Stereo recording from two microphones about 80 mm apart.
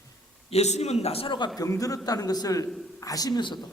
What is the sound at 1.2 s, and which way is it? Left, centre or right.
Speech, left.